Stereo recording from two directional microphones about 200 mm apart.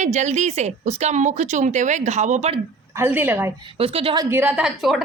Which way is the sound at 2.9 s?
10° right (ahead or behind).